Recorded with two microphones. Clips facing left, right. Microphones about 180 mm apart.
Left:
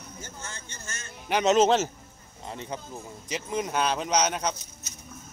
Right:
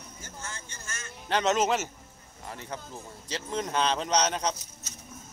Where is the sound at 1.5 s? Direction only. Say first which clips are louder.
Left 6 dB; 25° left (ahead or behind).